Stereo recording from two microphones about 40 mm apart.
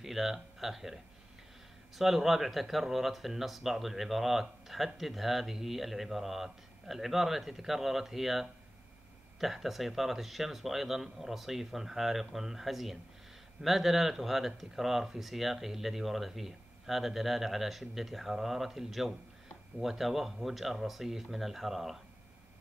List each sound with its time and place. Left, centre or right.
0.0 s speech: centre
2.0 s speech: centre